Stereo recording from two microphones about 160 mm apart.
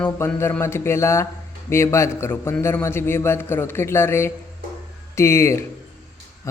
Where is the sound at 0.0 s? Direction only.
15° left (ahead or behind).